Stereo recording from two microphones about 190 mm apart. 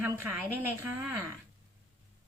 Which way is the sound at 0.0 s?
10° right (ahead or behind).